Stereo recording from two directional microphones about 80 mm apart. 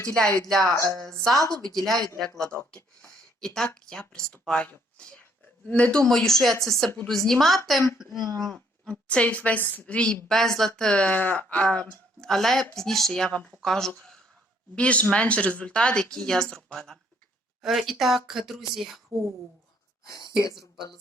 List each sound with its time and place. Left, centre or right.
0.0 s speech: centre
6.1 s speech: centre
8.2 s speech: right
8.4 s speech: centre
14.8 s speech: centre
20.1 s speech: left